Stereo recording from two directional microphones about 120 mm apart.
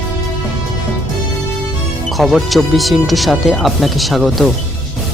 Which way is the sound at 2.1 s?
Centre (ahead or behind).